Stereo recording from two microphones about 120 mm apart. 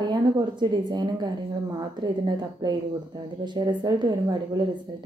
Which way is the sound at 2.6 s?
35° right (ahead or behind).